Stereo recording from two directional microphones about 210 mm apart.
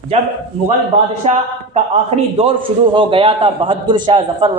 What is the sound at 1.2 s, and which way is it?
A man's voice, 30° right (ahead or behind).